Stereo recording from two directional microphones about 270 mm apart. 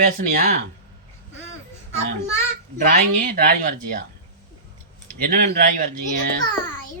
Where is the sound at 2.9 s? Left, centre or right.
Right.